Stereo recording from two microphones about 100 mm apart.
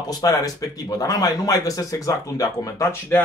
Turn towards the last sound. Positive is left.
turn(degrees=25)  # may be behind; listen again after turning